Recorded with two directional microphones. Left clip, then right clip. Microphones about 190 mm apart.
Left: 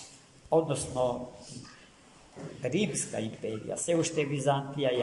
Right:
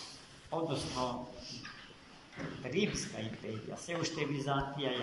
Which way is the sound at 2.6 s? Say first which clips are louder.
Left 5 dB; 65° left (ahead or behind).